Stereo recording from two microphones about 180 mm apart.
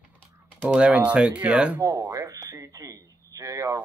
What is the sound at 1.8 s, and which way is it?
Speech, 15° right (ahead or behind).